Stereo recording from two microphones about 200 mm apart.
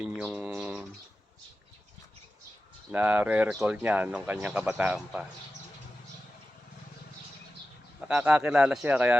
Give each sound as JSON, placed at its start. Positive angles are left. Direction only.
{"t": 0.0, "sound": "a sound", "side_deg": -5}
{"t": 2.9, "sound": "speech", "side_deg": -10}
{"t": 8.0, "sound": "speech", "side_deg": -5}